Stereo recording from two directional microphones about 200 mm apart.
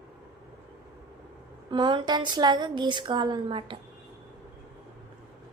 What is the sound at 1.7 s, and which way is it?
A woman's voice, 25° right (ahead or behind).